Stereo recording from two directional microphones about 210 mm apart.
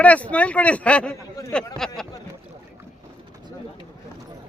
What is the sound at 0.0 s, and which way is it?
Speech, 5° left (ahead or behind).